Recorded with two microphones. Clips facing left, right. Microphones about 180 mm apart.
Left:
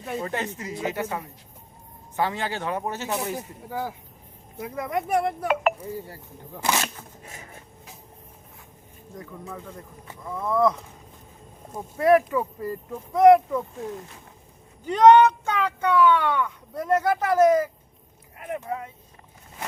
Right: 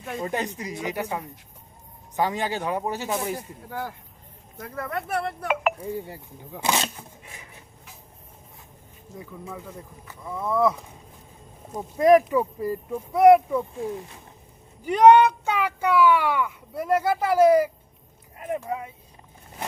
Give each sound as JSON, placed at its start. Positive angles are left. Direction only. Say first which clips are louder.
{"t": 0.2, "sound": "speech", "louder": "right 5 dB", "side_deg": -15}
{"t": 3.3, "sound": "speech", "louder": "left 2 dB", "side_deg": 10}
{"t": 5.8, "sound": "speech", "louder": "right 3 dB", "side_deg": -15}
{"t": 9.1, "sound": "speech", "louder": "even", "side_deg": -5}
{"t": 11.7, "sound": "speech", "louder": "right 2 dB", "side_deg": -15}
{"t": 18.3, "sound": "speech", "louder": "right 3 dB", "side_deg": -25}
{"t": 18.6, "sound": "speech", "louder": "right 1 dB", "side_deg": -10}